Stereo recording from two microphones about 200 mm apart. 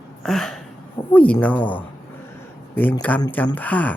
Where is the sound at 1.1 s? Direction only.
5° left (ahead or behind).